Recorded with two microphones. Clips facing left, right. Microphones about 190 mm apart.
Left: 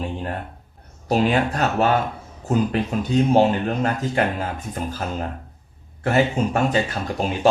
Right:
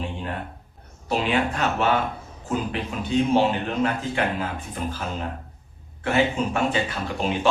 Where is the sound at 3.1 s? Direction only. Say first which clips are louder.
Left 3 dB; 40° left (ahead or behind).